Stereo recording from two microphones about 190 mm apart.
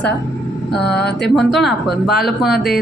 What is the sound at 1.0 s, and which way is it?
Music, 60° left (ahead or behind).